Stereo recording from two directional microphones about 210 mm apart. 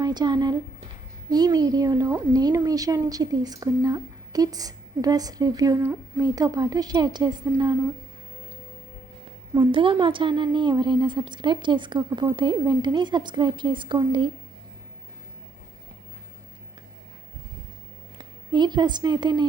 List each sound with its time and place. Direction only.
0.0 s a woman's voice: 20° right (ahead or behind)
9.6 s a woman's voice: 25° right (ahead or behind)
18.2 s a woman's voice: 20° right (ahead or behind)